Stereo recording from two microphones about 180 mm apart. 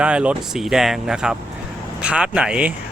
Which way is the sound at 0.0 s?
5° right (ahead or behind).